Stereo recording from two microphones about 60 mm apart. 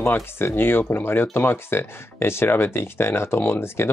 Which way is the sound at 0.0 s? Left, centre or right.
Left.